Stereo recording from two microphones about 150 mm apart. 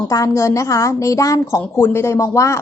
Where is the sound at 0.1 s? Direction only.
20° left (ahead or behind).